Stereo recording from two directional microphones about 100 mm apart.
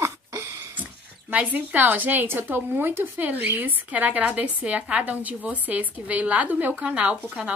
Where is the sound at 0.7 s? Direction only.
15° right (ahead or behind).